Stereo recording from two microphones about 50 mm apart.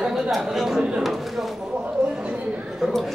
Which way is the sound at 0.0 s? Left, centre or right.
Centre.